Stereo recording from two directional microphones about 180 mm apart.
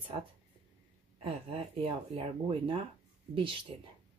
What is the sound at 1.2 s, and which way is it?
Speech, 30° right (ahead or behind).